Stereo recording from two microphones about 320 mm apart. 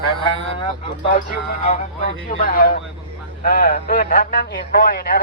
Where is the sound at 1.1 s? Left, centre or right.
Left.